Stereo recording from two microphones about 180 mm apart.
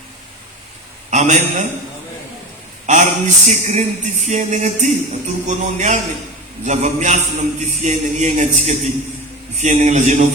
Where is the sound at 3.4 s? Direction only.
40° right (ahead or behind).